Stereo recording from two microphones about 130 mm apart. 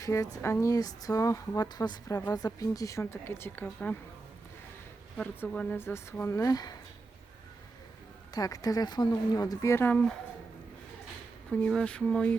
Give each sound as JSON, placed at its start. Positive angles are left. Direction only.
{"t": 0.0, "sound": "speech", "side_deg": 25}
{"t": 5.1, "sound": "speech", "side_deg": 10}
{"t": 8.3, "sound": "speech", "side_deg": 30}
{"t": 11.5, "sound": "speech", "side_deg": 5}